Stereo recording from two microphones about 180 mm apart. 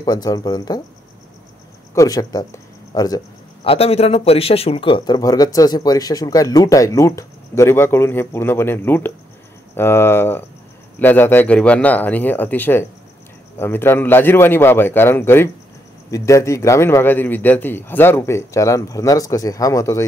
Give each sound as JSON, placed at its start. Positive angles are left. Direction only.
{"t": 0.0, "sound": "speech", "side_deg": 20}
{"t": 2.0, "sound": "speech", "side_deg": 20}
{"t": 3.6, "sound": "a man's voice", "side_deg": 30}